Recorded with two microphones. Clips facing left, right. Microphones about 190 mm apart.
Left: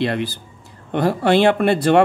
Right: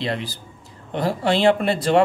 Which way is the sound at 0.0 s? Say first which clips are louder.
Left 5 dB; 60° left (ahead or behind).